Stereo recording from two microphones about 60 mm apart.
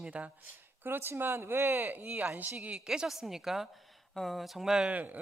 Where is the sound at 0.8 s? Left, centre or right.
Right.